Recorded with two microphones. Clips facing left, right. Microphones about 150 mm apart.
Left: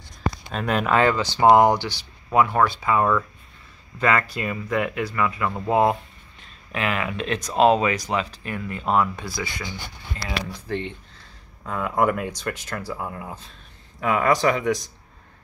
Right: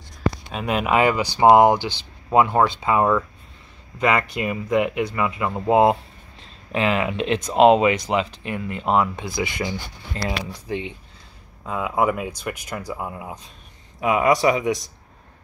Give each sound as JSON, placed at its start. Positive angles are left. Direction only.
{"t": 0.5, "sound": "speech", "side_deg": -5}